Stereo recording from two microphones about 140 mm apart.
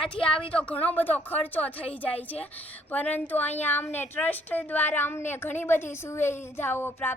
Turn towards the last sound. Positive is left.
turn(degrees=15)  # may be behind; listen again after turning